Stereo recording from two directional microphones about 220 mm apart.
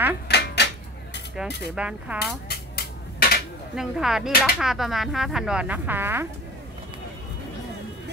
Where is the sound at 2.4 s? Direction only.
45° left (ahead or behind).